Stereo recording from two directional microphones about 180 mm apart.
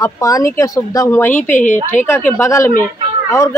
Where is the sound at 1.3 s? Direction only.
45° left (ahead or behind).